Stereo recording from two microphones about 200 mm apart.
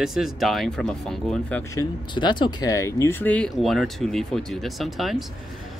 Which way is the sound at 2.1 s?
25° left (ahead or behind).